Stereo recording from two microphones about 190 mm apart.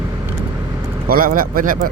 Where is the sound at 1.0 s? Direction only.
50° right (ahead or behind).